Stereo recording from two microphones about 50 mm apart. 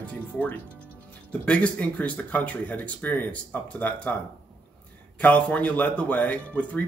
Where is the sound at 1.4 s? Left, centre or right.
Left.